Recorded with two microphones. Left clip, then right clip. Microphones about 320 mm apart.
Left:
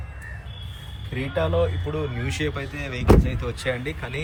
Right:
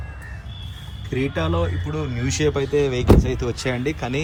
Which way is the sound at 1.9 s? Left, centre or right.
Centre.